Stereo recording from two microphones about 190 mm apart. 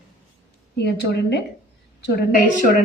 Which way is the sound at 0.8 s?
60° left (ahead or behind).